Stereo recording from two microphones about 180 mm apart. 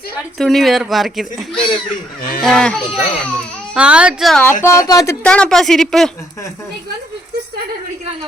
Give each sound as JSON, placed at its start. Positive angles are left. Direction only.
{"t": 0.3, "sound": "speech", "side_deg": 0}
{"t": 1.5, "sound": "speech", "side_deg": 30}
{"t": 2.4, "sound": "speech", "side_deg": 5}
{"t": 3.8, "sound": "a woman's voice", "side_deg": -5}
{"t": 4.6, "sound": "speech", "side_deg": 20}
{"t": 5.2, "sound": "speech", "side_deg": 5}